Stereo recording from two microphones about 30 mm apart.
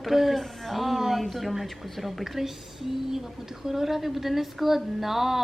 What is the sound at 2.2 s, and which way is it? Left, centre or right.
Speech, centre.